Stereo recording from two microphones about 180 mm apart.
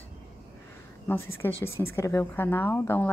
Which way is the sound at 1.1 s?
15° left (ahead or behind).